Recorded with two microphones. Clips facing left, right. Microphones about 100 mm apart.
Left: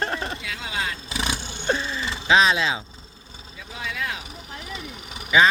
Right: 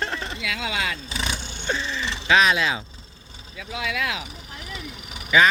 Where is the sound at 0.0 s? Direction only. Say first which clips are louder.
Left 2 dB; 40° left (ahead or behind).